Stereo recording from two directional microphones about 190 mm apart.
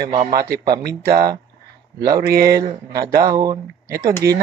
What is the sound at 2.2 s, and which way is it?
Speech, 55° right (ahead or behind).